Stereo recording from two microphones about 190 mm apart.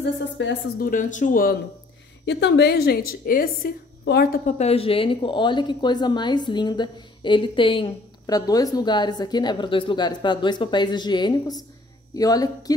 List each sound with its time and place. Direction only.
0.0 s a woman's voice: 70° left (ahead or behind)
0.7 s speech: 45° left (ahead or behind)
2.2 s a woman's voice: 65° left (ahead or behind)
4.6 s a woman's voice: 30° left (ahead or behind)